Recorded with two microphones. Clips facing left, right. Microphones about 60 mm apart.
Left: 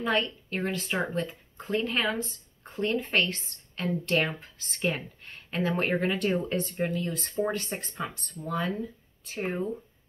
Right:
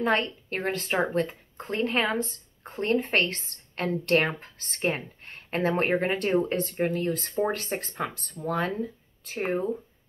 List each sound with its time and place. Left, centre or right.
0.0 s speech: right